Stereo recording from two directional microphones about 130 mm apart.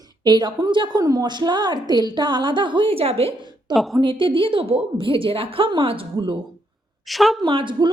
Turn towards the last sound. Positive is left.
turn(degrees=-40)  # may be behind; listen again after turning